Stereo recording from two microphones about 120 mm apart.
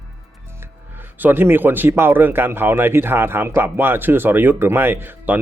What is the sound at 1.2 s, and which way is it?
Speech, 15° right (ahead or behind).